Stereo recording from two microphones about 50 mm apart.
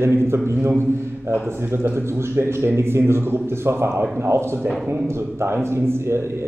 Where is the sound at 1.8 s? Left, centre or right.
Right.